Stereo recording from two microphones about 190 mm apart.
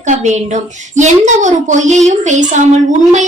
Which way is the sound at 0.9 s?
40° right (ahead or behind).